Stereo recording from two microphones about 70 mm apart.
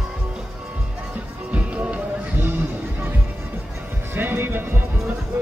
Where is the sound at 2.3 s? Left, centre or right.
Right.